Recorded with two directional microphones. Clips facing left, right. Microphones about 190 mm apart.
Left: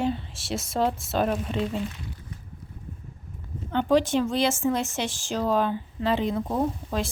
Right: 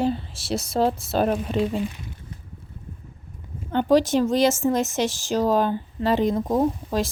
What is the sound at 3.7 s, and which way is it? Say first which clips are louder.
Speech: right 3 dB; 40° right (ahead or behind).